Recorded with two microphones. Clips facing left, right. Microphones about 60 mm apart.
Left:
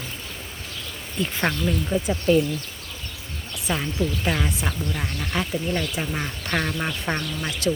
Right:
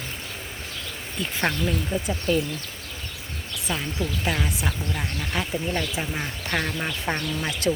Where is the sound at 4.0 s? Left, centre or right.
Centre.